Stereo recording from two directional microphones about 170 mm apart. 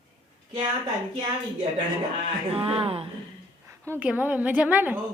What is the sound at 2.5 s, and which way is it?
Speech, 35° right (ahead or behind).